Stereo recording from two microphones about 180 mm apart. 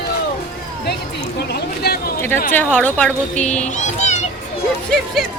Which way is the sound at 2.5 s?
10° left (ahead or behind).